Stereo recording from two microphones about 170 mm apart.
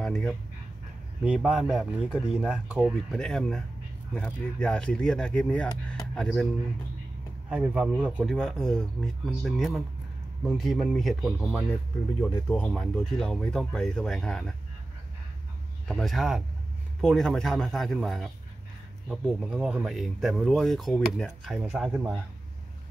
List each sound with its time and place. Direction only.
0.0 s speech: 5° left (ahead or behind)
2.9 s speech: 5° left (ahead or behind)
5.9 s music: 5° left (ahead or behind)
7.4 s speech: 5° right (ahead or behind)
15.9 s speech: centre (ahead or behind)